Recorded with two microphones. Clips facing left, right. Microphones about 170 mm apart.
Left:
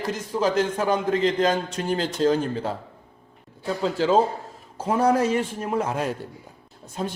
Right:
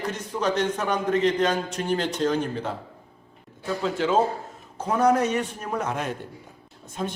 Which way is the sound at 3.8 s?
30° left (ahead or behind).